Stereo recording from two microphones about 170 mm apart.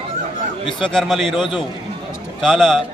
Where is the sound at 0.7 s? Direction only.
30° left (ahead or behind).